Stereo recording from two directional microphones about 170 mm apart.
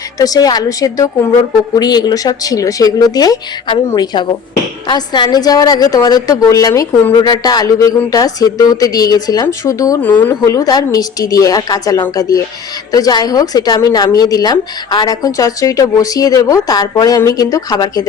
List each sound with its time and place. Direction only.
0.2 s a woman's voice: 20° left (ahead or behind)